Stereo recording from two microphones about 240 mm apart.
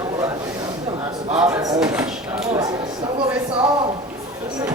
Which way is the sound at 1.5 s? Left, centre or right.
Centre.